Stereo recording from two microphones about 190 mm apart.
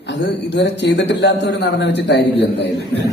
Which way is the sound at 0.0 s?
65° left (ahead or behind).